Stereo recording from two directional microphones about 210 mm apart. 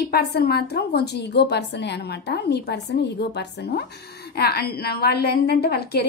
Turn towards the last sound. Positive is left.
turn(degrees=50)  # may be behind; listen again after turning